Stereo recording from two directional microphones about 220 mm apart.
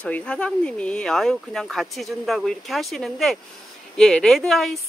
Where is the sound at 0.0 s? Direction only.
5° left (ahead or behind).